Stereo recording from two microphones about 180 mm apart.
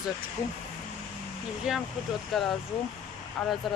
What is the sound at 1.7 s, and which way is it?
Speech, 5° right (ahead or behind).